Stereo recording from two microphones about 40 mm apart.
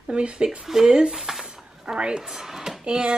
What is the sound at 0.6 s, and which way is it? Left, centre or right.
Speech, centre.